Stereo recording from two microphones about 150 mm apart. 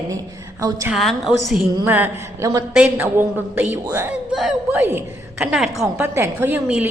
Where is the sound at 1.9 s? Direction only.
15° right (ahead or behind).